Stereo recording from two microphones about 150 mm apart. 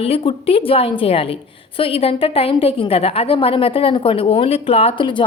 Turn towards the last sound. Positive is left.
turn(degrees=35)  # may be behind; listen again after turning